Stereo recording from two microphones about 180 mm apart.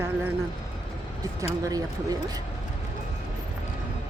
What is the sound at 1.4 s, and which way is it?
Speech, 20° right (ahead or behind).